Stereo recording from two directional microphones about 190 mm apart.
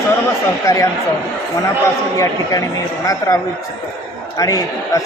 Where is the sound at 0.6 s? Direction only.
15° left (ahead or behind).